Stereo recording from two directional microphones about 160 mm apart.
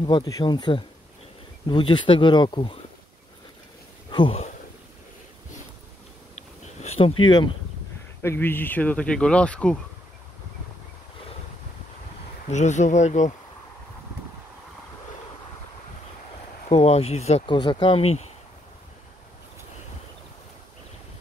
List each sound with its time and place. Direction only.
0.0 s speech: 25° left (ahead or behind)
4.1 s speech: 35° left (ahead or behind)
6.6 s a sound: 45° left (ahead or behind)
8.2 s speech: 15° left (ahead or behind)
12.4 s speech: 45° left (ahead or behind)
16.6 s speech: 40° left (ahead or behind)
17.6 s speech: 30° left (ahead or behind)